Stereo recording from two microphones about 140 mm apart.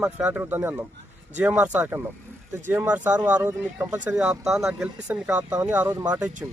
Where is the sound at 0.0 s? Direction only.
10° right (ahead or behind).